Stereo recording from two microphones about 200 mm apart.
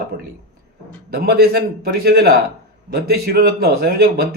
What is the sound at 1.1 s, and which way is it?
Speech, 50° right (ahead or behind).